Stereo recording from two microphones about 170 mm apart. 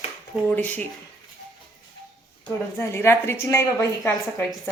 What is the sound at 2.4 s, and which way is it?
Speech, 15° left (ahead or behind).